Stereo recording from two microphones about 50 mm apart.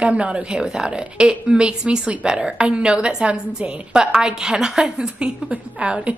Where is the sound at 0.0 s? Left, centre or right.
Right.